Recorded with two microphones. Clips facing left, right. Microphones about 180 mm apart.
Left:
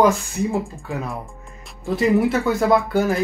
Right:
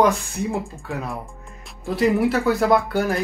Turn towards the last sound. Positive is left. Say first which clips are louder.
# left 1 dB
turn(degrees=0)  # may be behind; listen again after turning